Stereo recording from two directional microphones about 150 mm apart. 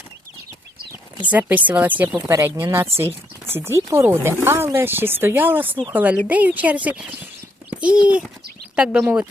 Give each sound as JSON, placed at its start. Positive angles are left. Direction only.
{"t": 1.3, "sound": "speech", "side_deg": -10}